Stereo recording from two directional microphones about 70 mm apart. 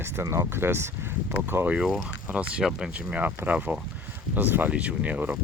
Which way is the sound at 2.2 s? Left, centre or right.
Centre.